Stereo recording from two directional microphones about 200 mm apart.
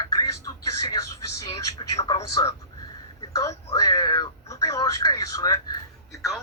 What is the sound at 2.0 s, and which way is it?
Speech, 30° left (ahead or behind).